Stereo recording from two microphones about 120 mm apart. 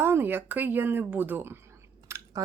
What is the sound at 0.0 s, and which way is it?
Speech, 20° right (ahead or behind).